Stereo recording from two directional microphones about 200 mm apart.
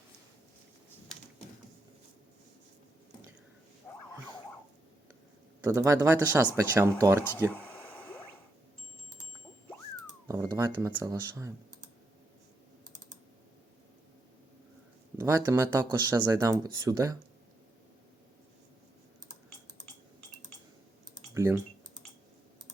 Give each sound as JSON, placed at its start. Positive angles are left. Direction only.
{"t": 3.9, "sound": "a sound", "side_deg": 5}
{"t": 5.7, "sound": "speech", "side_deg": -15}
{"t": 7.5, "sound": "a sound", "side_deg": 5}
{"t": 10.2, "sound": "speech", "side_deg": -15}
{"t": 15.2, "sound": "speech", "side_deg": -15}
{"t": 21.3, "sound": "typing", "side_deg": -15}